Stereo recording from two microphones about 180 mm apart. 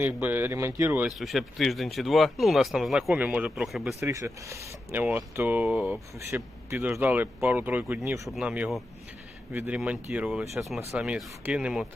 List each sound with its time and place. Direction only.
0.0 s speech: 10° right (ahead or behind)
1.1 s speech: centre (ahead or behind)
4.0 s speech: 15° right (ahead or behind)